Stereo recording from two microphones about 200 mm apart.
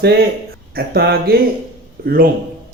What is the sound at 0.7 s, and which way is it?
Speech, 50° right (ahead or behind).